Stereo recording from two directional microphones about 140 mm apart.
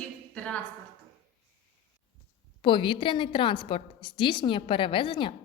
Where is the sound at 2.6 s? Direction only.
35° left (ahead or behind).